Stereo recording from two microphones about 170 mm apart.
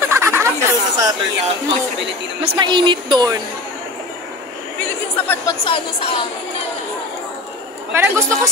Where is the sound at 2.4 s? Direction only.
30° right (ahead or behind).